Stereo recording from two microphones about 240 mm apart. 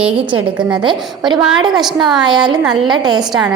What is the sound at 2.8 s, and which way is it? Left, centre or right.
Speech, centre.